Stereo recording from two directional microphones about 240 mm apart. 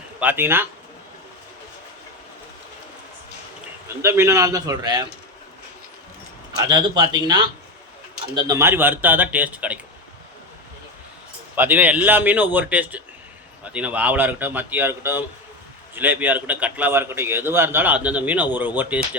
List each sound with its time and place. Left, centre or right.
0.2 s a man's voice: centre
4.0 s a man's voice: centre
6.7 s a man's voice: centre
8.4 s a man's voice: centre
11.5 s a man's voice: centre